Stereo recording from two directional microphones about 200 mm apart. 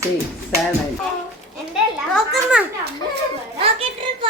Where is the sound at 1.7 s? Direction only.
Centre (ahead or behind).